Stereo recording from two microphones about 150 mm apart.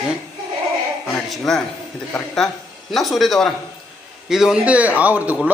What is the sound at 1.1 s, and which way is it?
A man's voice, 5° left (ahead or behind).